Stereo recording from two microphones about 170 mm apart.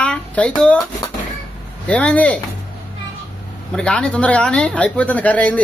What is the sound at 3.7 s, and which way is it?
Speech, 5° left (ahead or behind).